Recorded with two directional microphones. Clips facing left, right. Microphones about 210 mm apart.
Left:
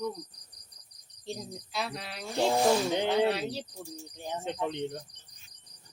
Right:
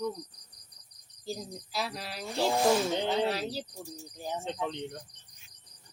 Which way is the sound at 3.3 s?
Centre (ahead or behind).